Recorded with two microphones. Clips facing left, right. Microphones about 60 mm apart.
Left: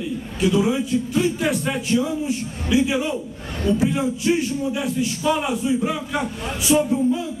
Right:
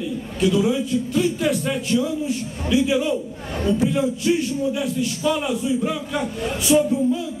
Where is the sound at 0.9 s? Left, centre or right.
Left.